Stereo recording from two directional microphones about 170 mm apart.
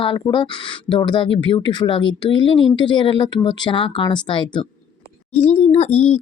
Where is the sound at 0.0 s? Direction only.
30° left (ahead or behind).